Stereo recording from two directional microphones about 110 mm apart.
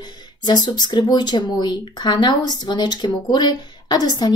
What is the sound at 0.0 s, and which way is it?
Speech, 40° left (ahead or behind).